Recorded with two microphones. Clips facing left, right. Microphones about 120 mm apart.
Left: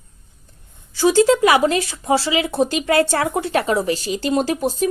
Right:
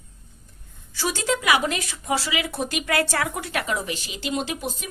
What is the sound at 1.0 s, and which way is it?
Speech, 30° left (ahead or behind).